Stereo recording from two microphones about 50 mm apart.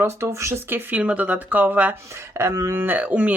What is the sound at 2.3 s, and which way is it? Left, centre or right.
Speech, right.